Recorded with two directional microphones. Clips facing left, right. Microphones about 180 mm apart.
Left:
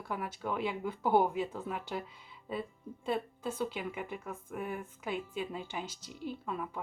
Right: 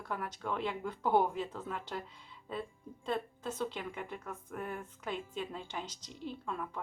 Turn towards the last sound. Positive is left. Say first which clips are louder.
# left 2 dB
turn(degrees=5)  # may be behind; listen again after turning